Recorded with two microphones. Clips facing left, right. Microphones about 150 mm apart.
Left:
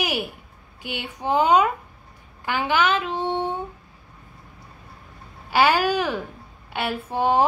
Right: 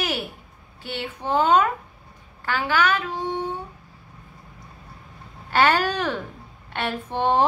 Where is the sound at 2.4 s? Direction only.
20° left (ahead or behind).